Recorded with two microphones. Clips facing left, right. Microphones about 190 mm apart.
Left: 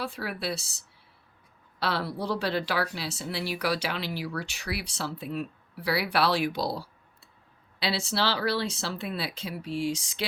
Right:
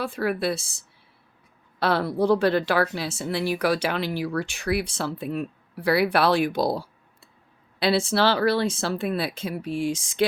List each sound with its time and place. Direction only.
0.0 s speech: 50° right (ahead or behind)
1.8 s speech: 50° right (ahead or behind)